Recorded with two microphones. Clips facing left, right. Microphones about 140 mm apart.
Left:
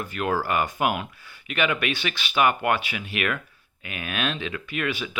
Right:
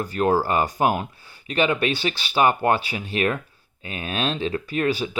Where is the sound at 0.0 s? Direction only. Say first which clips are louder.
Right 5 dB; 35° right (ahead or behind).